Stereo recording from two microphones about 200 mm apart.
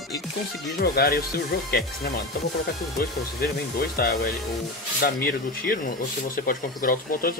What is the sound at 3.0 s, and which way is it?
Speech, 50° left (ahead or behind).